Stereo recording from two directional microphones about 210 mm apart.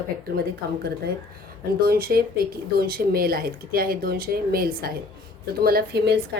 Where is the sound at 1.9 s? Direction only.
45° right (ahead or behind).